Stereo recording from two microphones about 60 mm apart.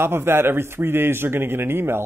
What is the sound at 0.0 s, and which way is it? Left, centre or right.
A man's voice, right.